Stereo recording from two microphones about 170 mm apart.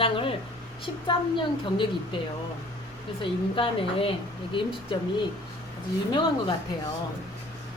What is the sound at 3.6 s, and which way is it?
A woman's voice, 30° left (ahead or behind).